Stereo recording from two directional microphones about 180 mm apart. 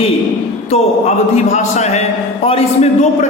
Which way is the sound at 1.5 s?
40° left (ahead or behind).